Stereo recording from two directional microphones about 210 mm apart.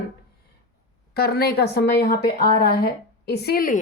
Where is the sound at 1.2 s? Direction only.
45° left (ahead or behind).